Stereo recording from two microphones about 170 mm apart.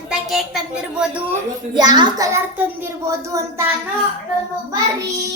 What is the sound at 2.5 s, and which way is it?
A child's voice, 10° right (ahead or behind).